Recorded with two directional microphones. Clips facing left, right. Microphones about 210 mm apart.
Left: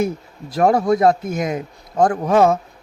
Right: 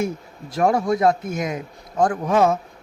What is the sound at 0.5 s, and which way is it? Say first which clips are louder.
Speech: left 4 dB; 40° left (ahead or behind).